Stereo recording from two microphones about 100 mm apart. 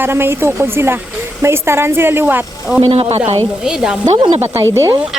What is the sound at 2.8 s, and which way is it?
Speech, 90° right.